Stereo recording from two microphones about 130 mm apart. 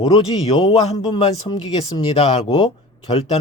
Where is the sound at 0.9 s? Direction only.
35° left (ahead or behind).